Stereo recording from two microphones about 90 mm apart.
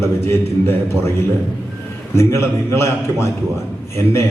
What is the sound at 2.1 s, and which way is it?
A man's voice, 30° left (ahead or behind).